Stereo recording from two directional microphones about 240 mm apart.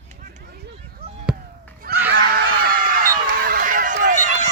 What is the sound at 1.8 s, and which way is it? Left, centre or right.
Screaming, right.